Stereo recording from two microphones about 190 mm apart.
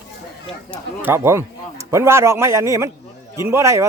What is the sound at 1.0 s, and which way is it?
A man's voice, 15° right (ahead or behind).